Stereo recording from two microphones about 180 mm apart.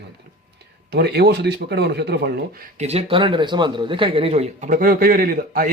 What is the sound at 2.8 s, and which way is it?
A man's voice, 35° right (ahead or behind).